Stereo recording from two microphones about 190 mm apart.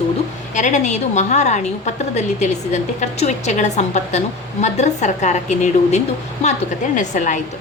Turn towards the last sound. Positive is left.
turn(degrees=40)  # may be behind; listen again after turning